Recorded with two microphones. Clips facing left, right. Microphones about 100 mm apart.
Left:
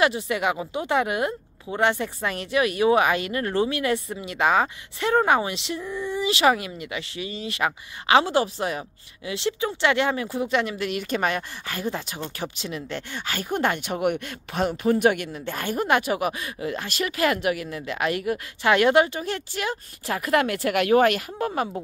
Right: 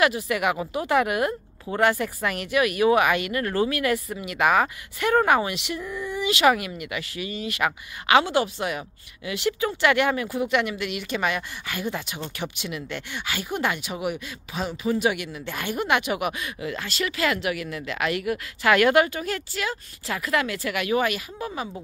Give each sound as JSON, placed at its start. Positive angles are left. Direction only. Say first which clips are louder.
{"t": 0.0, "sound": "speech", "louder": "even", "side_deg": 25}